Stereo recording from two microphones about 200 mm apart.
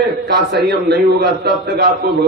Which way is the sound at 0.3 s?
55° right (ahead or behind).